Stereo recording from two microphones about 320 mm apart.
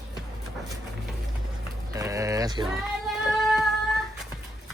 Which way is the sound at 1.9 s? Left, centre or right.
Centre.